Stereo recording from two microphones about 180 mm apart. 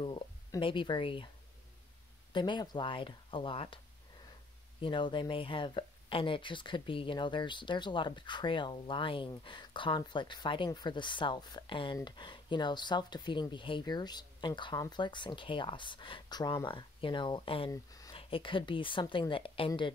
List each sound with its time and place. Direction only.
0.0 s speech: 25° left (ahead or behind)
2.3 s speech: 25° left (ahead or behind)